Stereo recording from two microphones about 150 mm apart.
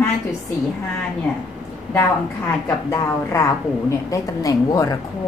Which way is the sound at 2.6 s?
20° left (ahead or behind).